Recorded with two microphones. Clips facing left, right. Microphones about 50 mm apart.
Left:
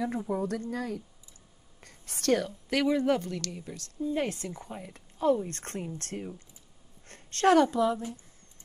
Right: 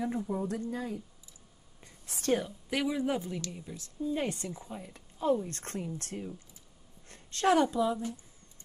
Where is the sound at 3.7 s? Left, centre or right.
Left.